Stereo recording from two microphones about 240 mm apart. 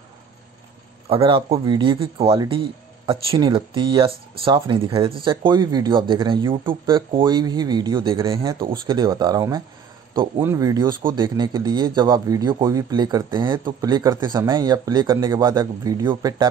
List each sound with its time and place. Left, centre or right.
1.0 s a man's voice: right